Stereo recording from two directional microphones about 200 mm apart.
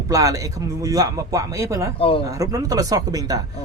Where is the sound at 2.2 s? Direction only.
15° right (ahead or behind).